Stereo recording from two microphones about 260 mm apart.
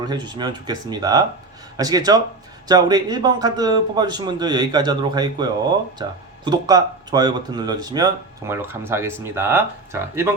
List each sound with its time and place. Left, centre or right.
0.0 s speech: centre